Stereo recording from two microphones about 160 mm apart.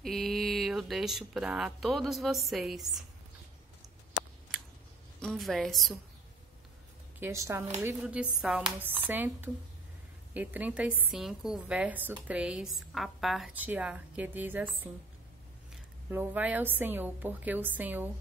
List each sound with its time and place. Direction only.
0.0 s speech: centre (ahead or behind)
5.2 s a woman's voice: 5° left (ahead or behind)
7.2 s a woman's voice: 15° right (ahead or behind)
8.0 s a woman's voice: 5° right (ahead or behind)
16.1 s a woman's voice: 10° right (ahead or behind)